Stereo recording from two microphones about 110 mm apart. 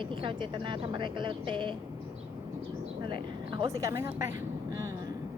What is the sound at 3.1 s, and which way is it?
Speech, 45° right (ahead or behind).